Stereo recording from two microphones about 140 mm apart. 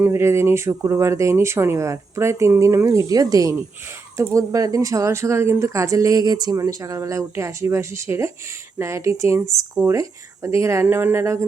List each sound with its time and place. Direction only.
0.0 s speech: 20° right (ahead or behind)